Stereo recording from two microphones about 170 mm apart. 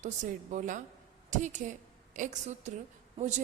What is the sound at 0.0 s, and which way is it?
A woman's voice, 45° right (ahead or behind).